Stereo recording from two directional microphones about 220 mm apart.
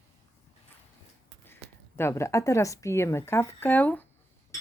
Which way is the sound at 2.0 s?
10° left (ahead or behind).